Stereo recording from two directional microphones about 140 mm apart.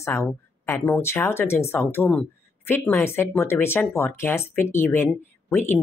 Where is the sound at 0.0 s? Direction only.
20° left (ahead or behind).